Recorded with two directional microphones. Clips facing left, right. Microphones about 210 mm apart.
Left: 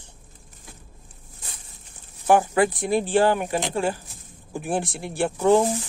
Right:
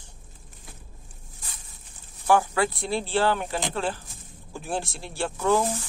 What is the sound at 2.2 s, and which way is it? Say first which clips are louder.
Speech: left 3 dB; 15° left (ahead or behind).